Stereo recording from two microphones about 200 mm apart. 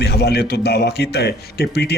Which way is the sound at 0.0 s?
55° left (ahead or behind).